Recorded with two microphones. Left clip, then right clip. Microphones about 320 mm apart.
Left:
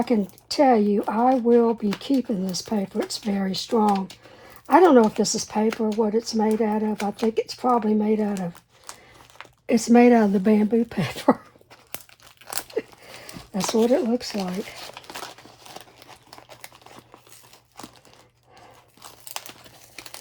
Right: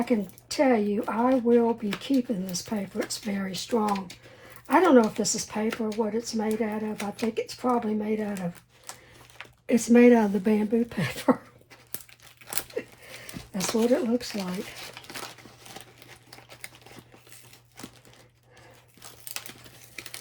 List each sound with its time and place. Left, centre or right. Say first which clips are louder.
0.0 s speech: left 4 dB; left
12.8 s a sound: left 6 dB; left
13.6 s speech: left 4 dB; centre